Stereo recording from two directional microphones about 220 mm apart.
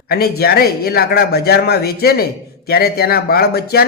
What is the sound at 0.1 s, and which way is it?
Speech, 45° left (ahead or behind).